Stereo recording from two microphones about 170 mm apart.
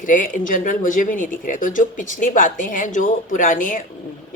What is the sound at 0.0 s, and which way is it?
A woman's voice, 50° left (ahead or behind).